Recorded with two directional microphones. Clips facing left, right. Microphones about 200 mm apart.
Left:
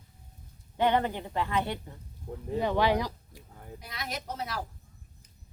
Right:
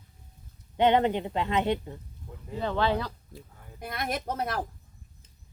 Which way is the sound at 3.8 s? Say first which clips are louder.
Right 7 dB; 55° right (ahead or behind).